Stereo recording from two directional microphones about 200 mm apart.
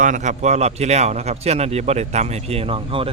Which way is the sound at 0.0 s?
40° right (ahead or behind).